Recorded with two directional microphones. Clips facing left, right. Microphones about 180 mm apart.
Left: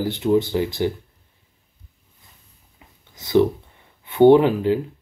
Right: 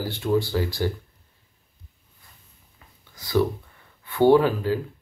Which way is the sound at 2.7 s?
20° left (ahead or behind).